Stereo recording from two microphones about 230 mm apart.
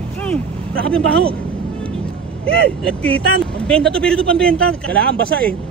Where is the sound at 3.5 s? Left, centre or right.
Centre.